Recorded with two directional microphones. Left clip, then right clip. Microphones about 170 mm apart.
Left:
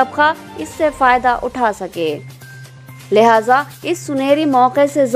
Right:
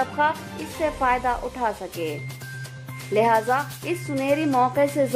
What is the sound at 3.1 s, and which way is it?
Speech, 40° left (ahead or behind).